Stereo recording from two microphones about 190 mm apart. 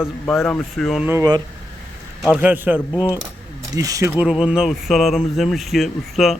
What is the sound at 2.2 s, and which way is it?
Speech, 5° right (ahead or behind).